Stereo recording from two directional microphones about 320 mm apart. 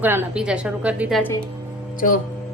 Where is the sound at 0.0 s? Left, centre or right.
Centre.